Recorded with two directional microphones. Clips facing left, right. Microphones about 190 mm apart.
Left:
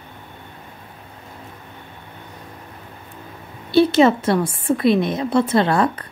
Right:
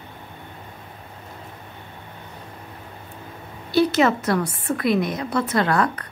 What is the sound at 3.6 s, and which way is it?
A woman's voice, 25° left (ahead or behind).